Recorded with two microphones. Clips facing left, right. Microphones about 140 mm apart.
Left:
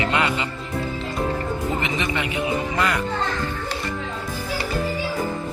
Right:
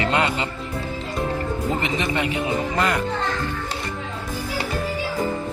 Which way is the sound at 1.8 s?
40° right (ahead or behind).